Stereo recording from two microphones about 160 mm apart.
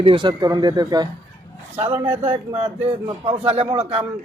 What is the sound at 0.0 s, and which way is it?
Speech, 30° right (ahead or behind).